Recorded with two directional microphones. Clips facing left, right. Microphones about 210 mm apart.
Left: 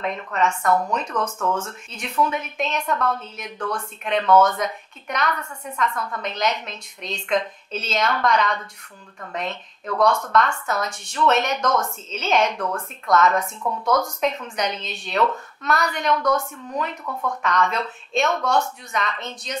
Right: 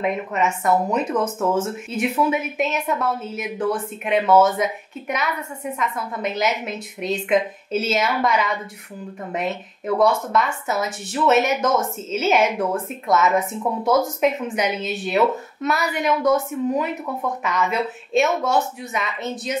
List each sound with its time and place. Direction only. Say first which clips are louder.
0.0 s a woman's voice: right 2 dB; 5° right (ahead or behind)
13.6 s speech: right 3 dB; 20° right (ahead or behind)
13.8 s a woman's voice: right 3 dB; 5° right (ahead or behind)